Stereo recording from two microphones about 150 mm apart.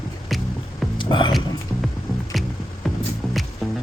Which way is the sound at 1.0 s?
30° left (ahead or behind).